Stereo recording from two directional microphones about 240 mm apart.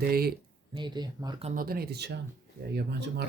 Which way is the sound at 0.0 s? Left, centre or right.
Right.